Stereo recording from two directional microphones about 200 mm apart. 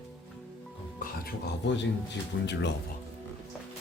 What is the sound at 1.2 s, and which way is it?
Speech, 60° left (ahead or behind).